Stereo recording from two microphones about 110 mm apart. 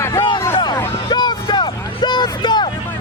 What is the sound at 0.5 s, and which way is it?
Hubbub, 45° left (ahead or behind).